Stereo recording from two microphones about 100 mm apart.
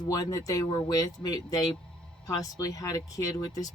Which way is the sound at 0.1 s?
35° left (ahead or behind).